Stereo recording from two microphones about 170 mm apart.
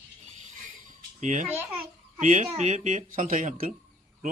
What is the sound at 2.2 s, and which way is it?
Speech, 45° right (ahead or behind).